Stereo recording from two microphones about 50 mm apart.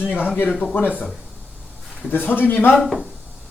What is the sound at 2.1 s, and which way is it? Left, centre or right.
Speech, left.